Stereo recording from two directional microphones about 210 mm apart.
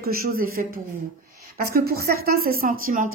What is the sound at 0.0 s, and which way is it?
A woman's voice, 45° right (ahead or behind).